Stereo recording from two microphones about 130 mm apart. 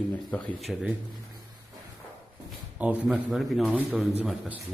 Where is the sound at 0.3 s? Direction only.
10° left (ahead or behind).